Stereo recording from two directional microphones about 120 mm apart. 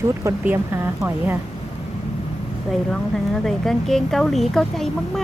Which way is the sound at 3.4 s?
5° left (ahead or behind).